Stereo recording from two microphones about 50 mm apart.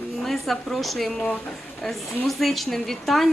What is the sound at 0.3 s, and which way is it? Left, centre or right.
A woman's voice, centre.